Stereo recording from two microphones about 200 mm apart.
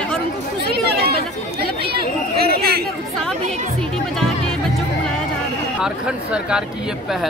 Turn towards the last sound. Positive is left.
turn(degrees=-5)  # may be behind; listen again after turning